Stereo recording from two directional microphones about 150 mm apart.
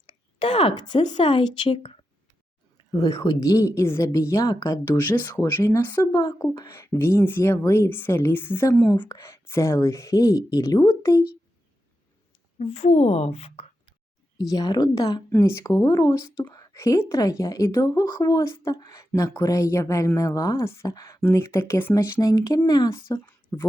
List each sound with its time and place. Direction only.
0.1 s a woman's voice: 35° left (ahead or behind)
2.9 s a woman's voice: 25° left (ahead or behind)
6.0 s a woman's voice: 25° left (ahead or behind)
12.8 s a woman's voice: 45° left (ahead or behind)
14.5 s a woman's voice: 25° left (ahead or behind)